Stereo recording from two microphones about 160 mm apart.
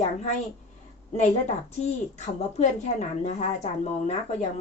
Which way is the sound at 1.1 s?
45° left (ahead or behind).